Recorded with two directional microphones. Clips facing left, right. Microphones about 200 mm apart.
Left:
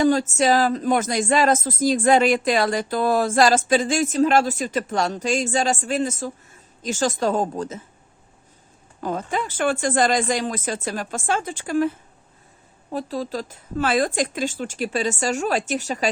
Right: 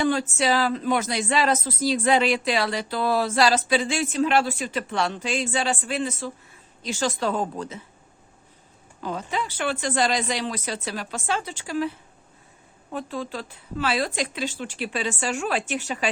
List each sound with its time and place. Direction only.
0.0 s speech: 40° left (ahead or behind)
9.0 s speech: 50° left (ahead or behind)
12.9 s a woman's voice: 35° left (ahead or behind)